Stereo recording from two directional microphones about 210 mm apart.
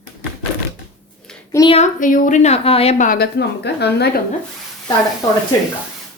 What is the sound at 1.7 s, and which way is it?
Speech, 35° left (ahead or behind).